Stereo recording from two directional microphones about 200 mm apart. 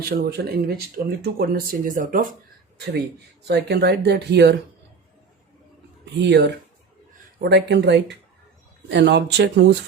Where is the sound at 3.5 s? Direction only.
55° right (ahead or behind).